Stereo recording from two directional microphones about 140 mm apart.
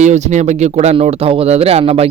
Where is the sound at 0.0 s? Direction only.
55° right (ahead or behind).